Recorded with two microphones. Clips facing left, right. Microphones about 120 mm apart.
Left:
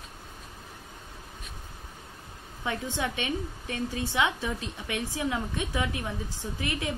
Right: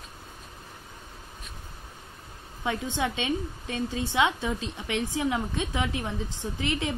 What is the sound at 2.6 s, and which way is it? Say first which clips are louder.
A woman's voice: right 2 dB; 20° right (ahead or behind).